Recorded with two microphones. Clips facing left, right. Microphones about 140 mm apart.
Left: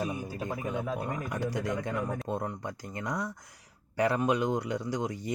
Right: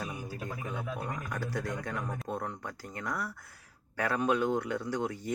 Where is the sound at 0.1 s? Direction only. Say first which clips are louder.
Left 4 dB; 20° left (ahead or behind).